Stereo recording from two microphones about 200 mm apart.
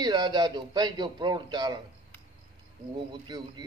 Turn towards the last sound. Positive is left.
turn(degrees=-20)  # may be behind; listen again after turning